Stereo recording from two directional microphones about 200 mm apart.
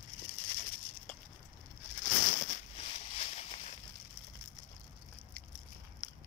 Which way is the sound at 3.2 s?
30° left (ahead or behind).